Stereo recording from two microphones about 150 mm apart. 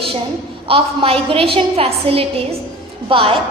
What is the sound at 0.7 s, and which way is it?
A woman's voice, 40° right (ahead or behind).